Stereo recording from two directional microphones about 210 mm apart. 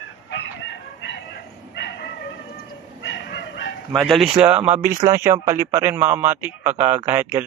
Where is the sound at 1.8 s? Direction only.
55° left (ahead or behind).